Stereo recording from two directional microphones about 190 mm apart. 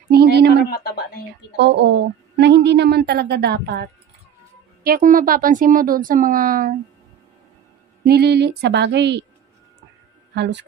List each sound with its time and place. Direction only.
0.1 s a woman's voice: 60° right (ahead or behind)
0.7 s speech: 55° left (ahead or behind)
1.6 s a woman's voice: 65° right (ahead or behind)
4.8 s speech: 45° right (ahead or behind)
8.0 s a woman's voice: 60° right (ahead or behind)
10.3 s speech: 65° right (ahead or behind)